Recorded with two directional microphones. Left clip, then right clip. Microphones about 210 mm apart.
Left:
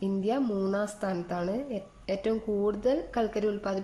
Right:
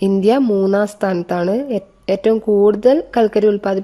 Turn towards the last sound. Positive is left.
turn(degrees=-40)  # may be behind; listen again after turning